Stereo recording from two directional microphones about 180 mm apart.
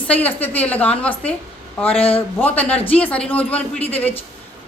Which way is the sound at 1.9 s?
30° left (ahead or behind).